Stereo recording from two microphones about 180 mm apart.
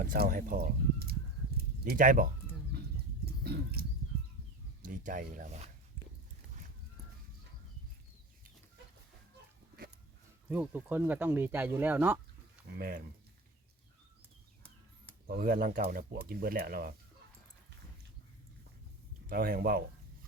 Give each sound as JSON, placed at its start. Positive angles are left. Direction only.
{"t": 0.0, "sound": "speech", "side_deg": -50}
{"t": 1.5, "sound": "a sound", "side_deg": -55}
{"t": 3.4, "sound": "a sound", "side_deg": -60}
{"t": 4.8, "sound": "speech", "side_deg": -50}
{"t": 10.5, "sound": "speech", "side_deg": -10}
{"t": 15.3, "sound": "speech", "side_deg": -50}
{"t": 19.3, "sound": "speech", "side_deg": -55}